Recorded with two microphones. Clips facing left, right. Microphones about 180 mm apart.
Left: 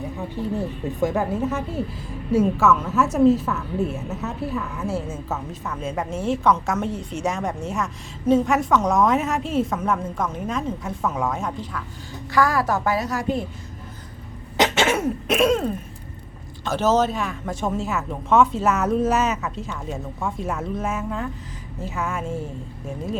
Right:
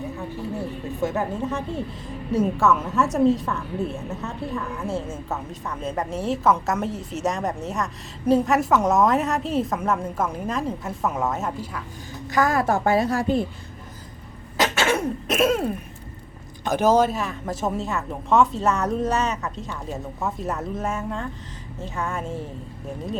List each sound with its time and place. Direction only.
0.9 s a woman's voice: 15° left (ahead or behind); by 11.8 s 5° right (ahead or behind)
12.3 s a woman's voice: 20° right (ahead or behind)
14.6 s cough: 20° left (ahead or behind)
14.9 s a woman's voice: centre (ahead or behind)